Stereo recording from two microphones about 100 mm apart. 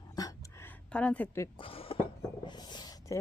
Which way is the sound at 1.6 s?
65° left (ahead or behind).